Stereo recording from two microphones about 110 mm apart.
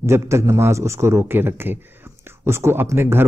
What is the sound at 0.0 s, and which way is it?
A man's voice, 25° right (ahead or behind).